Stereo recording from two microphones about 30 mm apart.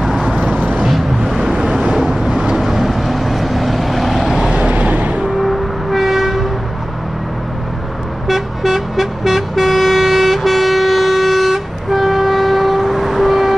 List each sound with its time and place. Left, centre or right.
1.4 s vehicle: right
2.6 s vehicle: centre
4.6 s vehicle: right
5.4 s vehicle: centre
8.3 s vehicle: centre